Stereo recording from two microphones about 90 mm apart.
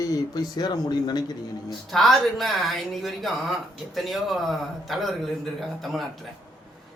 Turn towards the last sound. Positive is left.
turn(degrees=0)  # may be behind; listen again after turning